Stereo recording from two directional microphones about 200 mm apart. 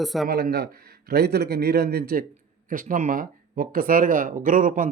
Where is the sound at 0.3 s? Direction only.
50° right (ahead or behind).